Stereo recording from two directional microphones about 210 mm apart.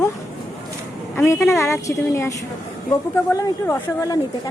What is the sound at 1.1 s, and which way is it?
A woman's voice, 15° left (ahead or behind).